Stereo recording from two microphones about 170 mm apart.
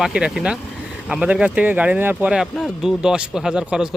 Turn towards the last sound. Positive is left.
turn(degrees=-5)  # may be behind; listen again after turning